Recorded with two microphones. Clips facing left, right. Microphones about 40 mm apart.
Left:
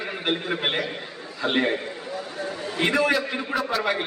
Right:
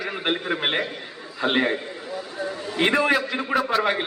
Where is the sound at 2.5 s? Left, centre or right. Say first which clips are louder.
Even; centre.